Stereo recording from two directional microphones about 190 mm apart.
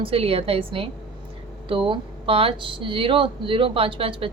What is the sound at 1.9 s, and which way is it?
A woman's voice, 30° right (ahead or behind).